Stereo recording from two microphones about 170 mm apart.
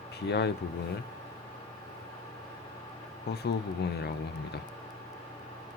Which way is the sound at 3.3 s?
75° left (ahead or behind).